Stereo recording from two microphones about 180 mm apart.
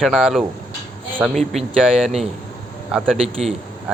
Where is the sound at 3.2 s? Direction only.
35° right (ahead or behind).